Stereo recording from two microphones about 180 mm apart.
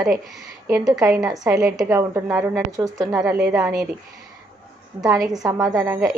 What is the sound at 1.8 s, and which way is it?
A woman's voice, 15° right (ahead or behind).